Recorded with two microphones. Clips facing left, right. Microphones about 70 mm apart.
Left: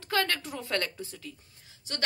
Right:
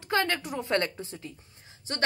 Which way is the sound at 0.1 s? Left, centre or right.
Right.